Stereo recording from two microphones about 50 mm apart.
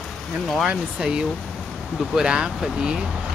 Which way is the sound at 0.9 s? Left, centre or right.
Centre.